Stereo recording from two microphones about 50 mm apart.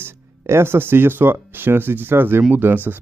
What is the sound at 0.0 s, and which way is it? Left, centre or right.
Speech, right.